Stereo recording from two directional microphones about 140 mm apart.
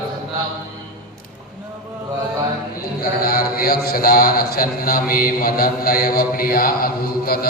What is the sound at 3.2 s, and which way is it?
A man's voice, 90° left.